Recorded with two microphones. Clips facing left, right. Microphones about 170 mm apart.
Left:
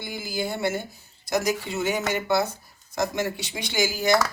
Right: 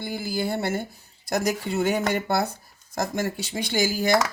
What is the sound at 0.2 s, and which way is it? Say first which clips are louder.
Speech: even; 60° right (ahead or behind).